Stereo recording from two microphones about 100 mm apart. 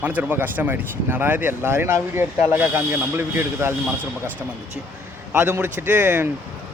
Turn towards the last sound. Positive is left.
turn(degrees=-20)  # may be behind; listen again after turning